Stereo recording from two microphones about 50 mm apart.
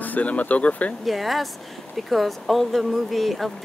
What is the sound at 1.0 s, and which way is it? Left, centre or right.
Speech, centre.